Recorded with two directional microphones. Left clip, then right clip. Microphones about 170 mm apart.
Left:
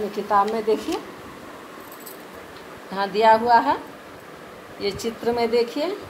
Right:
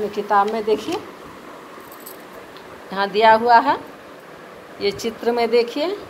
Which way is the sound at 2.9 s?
15° right (ahead or behind).